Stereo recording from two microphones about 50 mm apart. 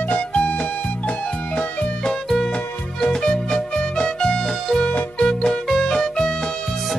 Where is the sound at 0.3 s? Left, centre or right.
Left.